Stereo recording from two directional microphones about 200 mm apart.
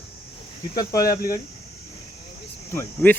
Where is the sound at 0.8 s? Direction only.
20° left (ahead or behind).